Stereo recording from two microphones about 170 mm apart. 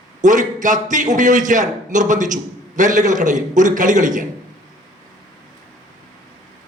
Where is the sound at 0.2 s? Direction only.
45° right (ahead or behind).